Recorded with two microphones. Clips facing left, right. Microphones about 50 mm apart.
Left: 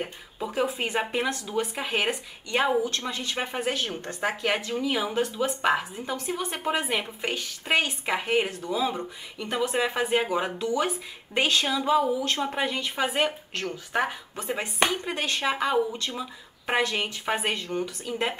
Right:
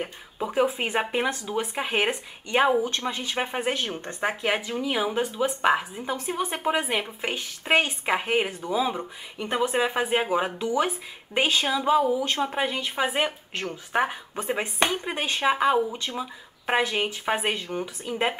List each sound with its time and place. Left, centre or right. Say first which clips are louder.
0.4 s a woman's voice: right 3 dB; right
7.3 s a woman's voice: right 3 dB; right